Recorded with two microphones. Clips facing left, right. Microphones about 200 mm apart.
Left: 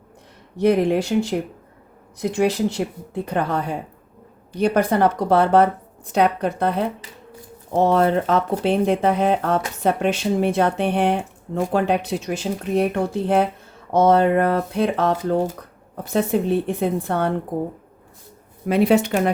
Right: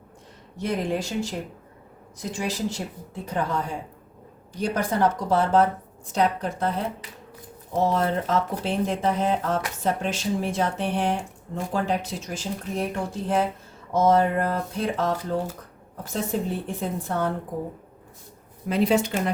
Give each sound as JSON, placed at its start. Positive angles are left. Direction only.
{"t": 0.5, "sound": "a woman's voice", "side_deg": 65}
{"t": 18.7, "sound": "speech", "side_deg": 65}